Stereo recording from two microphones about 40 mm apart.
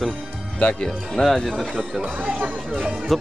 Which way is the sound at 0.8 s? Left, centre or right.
Centre.